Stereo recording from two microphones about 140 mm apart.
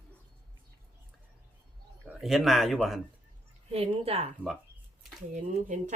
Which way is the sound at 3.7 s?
45° right (ahead or behind).